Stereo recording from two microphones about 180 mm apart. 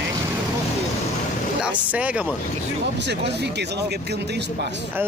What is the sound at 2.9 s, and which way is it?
Speech, 70° right (ahead or behind).